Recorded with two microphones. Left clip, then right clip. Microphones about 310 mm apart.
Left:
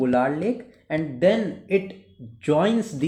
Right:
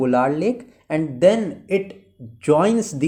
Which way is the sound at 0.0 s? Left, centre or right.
Centre.